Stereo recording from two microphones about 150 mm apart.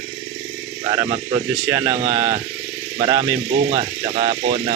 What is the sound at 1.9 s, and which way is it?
Speech, 40° right (ahead or behind).